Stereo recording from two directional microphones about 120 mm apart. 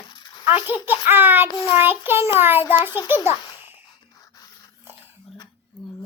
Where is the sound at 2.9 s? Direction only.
20° right (ahead or behind).